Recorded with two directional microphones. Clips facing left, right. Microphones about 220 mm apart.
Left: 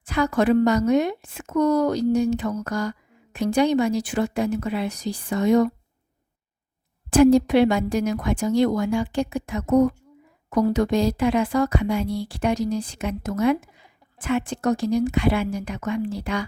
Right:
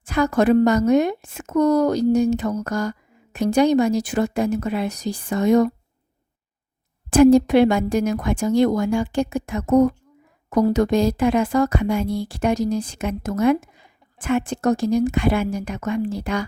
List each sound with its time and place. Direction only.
0.0 s a woman's voice: 45° right (ahead or behind)
7.1 s a woman's voice: 50° right (ahead or behind)